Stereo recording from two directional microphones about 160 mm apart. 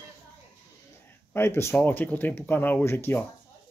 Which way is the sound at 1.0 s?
15° left (ahead or behind).